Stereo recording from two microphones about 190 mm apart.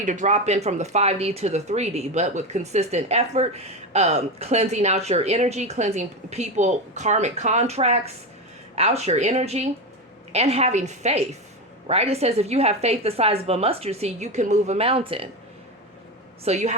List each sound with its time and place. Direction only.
0.0 s speech: 40° right (ahead or behind)
16.4 s speech: 35° right (ahead or behind)